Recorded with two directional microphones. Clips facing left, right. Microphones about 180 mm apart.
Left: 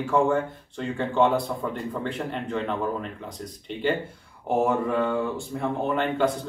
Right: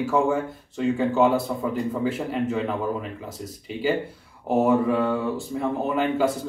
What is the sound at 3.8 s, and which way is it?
Speech, 5° right (ahead or behind).